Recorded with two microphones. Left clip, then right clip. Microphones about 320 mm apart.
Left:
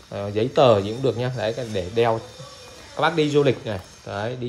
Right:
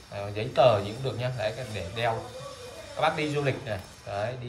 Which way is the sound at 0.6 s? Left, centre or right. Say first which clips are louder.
Left 4 dB; centre.